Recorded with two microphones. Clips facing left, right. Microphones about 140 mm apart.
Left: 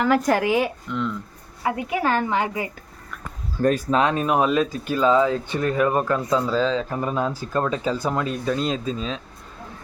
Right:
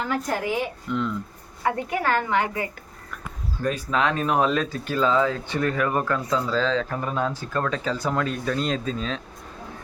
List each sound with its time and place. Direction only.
0.0 s speech: 90° left
0.9 s speech: centre (ahead or behind)
1.6 s speech: 15° left (ahead or behind)
2.0 s speech: 25° left (ahead or behind)
3.9 s speech: 20° left (ahead or behind); by 9.2 s 5° left (ahead or behind)